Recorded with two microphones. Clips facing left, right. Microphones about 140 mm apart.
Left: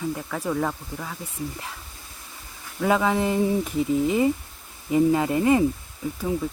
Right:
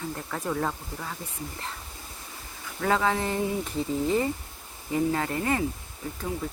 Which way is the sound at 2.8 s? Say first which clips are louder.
Left 4 dB; 10° left (ahead or behind).